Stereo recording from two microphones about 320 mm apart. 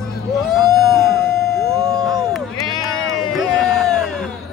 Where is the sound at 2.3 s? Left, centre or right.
Centre.